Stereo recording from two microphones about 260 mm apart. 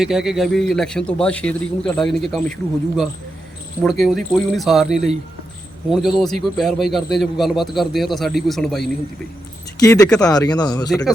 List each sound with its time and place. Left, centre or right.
0.0 s a man's voice: centre
9.8 s speech: centre
10.9 s a man's voice: centre